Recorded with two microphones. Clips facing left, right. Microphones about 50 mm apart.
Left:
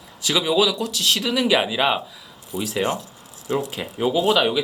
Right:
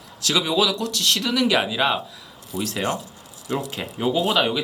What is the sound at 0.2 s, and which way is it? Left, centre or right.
Speech, centre.